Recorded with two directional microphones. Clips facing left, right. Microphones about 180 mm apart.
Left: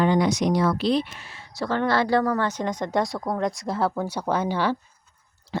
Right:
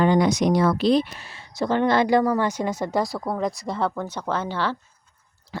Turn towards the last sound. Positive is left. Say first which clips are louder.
# left 4 dB
turn(degrees=30)  # may be behind; listen again after turning